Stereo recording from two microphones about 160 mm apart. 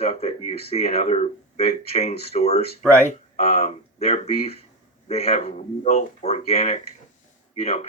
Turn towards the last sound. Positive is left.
turn(degrees=40)  # may be behind; listen again after turning